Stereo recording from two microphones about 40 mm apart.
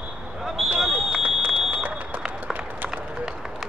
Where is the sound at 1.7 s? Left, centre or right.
Right.